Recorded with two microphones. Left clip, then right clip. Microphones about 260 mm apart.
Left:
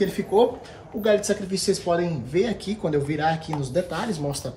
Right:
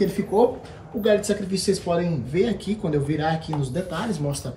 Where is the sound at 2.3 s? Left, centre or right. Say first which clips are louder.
Even; left.